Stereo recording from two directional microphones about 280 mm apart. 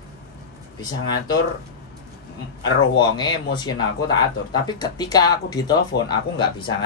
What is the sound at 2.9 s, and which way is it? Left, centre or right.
Speech, centre.